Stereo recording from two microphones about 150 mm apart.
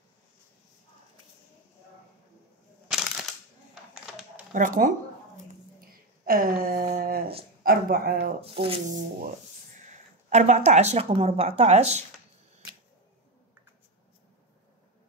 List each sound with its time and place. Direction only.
2.9 s a sound: centre (ahead or behind)
4.6 s speech: 60° right (ahead or behind)
5.8 s a sound: 75° right (ahead or behind)
7.6 s speech: 80° right
8.4 s speech: 40° right (ahead or behind)
10.3 s speech: 50° right (ahead or behind)